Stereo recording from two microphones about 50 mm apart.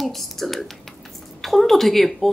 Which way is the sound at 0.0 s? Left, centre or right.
Centre.